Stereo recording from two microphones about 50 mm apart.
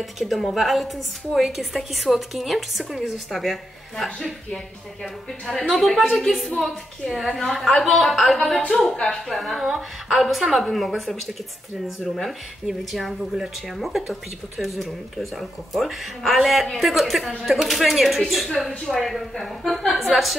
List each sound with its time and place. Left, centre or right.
0.0 s a woman's voice: centre
3.9 s a woman's voice: centre
12.2 s a woman's voice: centre